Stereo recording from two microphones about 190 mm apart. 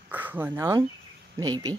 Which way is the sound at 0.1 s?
10° right (ahead or behind).